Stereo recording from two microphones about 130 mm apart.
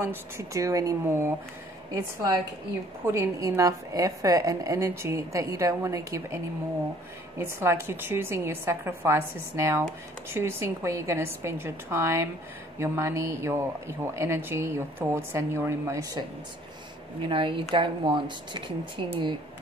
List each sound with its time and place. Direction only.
0.0 s speech: 20° right (ahead or behind)
3.1 s speech: 20° right (ahead or behind)
17.2 s speech: 40° right (ahead or behind)